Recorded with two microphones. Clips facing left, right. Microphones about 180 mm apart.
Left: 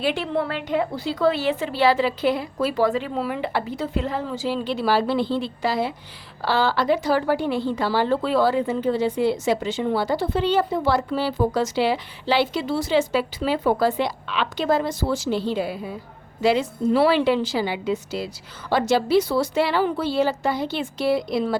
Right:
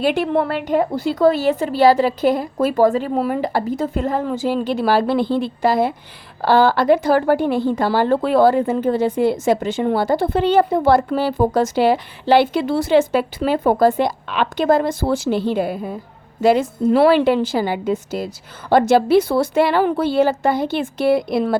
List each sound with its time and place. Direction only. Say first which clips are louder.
0.0 s speech: right 6 dB; 50° right (ahead or behind)